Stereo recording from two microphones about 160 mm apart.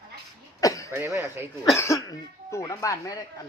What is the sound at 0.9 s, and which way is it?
Speech, 15° right (ahead or behind).